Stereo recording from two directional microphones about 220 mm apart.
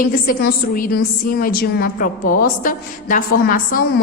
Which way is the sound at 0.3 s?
40° left (ahead or behind).